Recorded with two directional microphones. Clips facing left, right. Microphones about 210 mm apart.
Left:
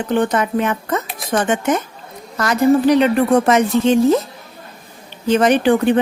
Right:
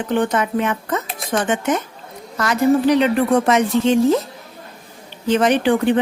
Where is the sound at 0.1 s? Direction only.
40° left (ahead or behind).